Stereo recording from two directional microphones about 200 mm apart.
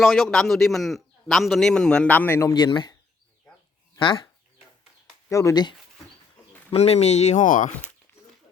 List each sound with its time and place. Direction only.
0.0 s a man's voice: centre (ahead or behind); by 2.9 s 25° left (ahead or behind)
3.9 s speech: 25° left (ahead or behind)
5.3 s speech: 15° left (ahead or behind)
6.7 s speech: 30° left (ahead or behind)